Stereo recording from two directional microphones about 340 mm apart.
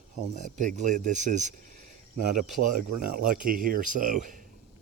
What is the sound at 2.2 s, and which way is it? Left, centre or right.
Speech, right.